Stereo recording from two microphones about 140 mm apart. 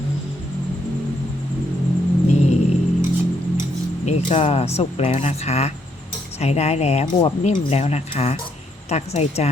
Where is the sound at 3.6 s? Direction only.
55° left (ahead or behind).